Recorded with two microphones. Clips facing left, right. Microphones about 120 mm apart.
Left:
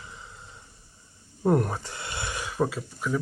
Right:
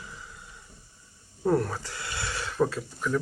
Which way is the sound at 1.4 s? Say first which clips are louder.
Left 2 dB; 20° left (ahead or behind).